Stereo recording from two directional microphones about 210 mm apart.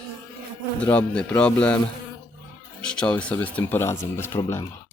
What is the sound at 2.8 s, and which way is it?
Speech, 5° left (ahead or behind).